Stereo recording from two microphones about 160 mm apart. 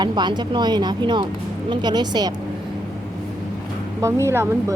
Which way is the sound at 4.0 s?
15° right (ahead or behind).